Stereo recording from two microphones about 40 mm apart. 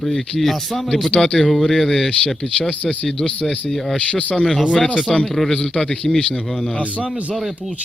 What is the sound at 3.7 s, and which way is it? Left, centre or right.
Speech, centre.